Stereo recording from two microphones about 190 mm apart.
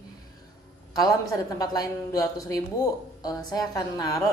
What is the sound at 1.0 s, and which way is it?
A woman's voice, 20° left (ahead or behind).